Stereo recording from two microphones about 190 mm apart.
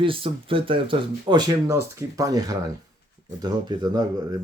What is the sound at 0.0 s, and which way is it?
Speech, 30° right (ahead or behind).